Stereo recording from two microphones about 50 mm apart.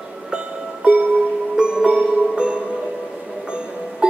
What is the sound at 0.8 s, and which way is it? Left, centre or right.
Music, right.